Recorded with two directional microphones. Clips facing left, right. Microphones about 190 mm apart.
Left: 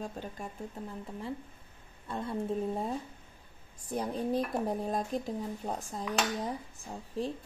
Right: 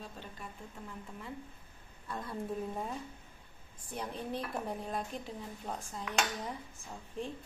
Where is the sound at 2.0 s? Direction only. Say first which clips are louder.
Left 5 dB; 25° left (ahead or behind).